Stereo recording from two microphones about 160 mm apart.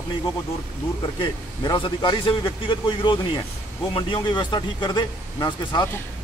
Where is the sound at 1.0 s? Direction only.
30° left (ahead or behind).